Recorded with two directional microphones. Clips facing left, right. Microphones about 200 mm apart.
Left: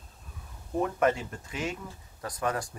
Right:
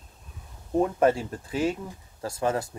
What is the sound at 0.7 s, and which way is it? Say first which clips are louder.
Speech: right 4 dB; 30° right (ahead or behind).